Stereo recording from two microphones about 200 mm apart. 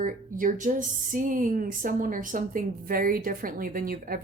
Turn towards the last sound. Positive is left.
turn(degrees=-45)  # may be behind; listen again after turning